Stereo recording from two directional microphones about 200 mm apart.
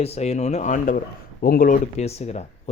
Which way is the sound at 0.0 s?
30° left (ahead or behind).